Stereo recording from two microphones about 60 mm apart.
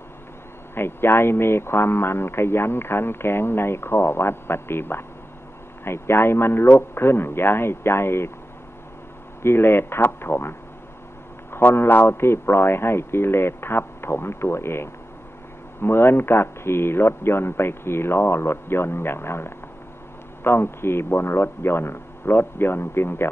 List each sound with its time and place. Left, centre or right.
0.7 s a man's voice: left
9.4 s a man's voice: left
11.5 s a man's voice: left